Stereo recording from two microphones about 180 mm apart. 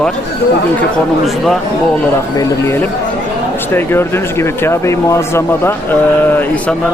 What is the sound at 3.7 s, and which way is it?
Speech, 10° left (ahead or behind).